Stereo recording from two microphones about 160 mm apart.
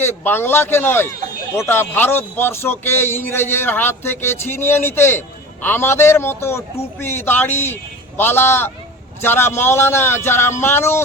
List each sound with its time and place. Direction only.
0.0 s speech: 15° left (ahead or behind)